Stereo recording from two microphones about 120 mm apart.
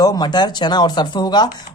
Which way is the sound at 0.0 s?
35° left (ahead or behind).